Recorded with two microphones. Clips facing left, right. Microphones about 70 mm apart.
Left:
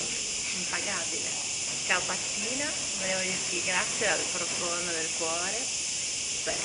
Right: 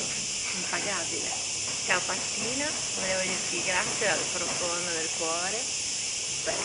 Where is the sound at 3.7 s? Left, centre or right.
Centre.